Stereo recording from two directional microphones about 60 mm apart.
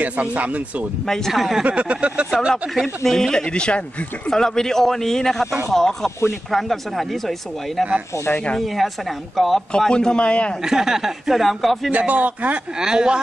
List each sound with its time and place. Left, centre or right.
0.0 s speech: right
1.0 s speech: centre
1.6 s speech: centre
3.0 s speech: centre
9.7 s speech: centre
10.6 s speech: centre
11.9 s speech: right
12.8 s speech: centre